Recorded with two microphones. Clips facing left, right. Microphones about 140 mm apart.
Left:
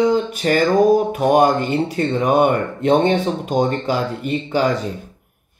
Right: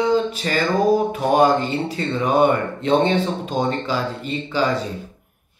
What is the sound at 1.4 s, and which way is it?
Speech, 55° left (ahead or behind).